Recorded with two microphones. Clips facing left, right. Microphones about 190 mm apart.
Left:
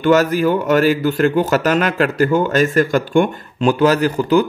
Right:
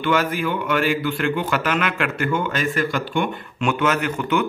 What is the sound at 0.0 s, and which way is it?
A man's voice, 40° left (ahead or behind).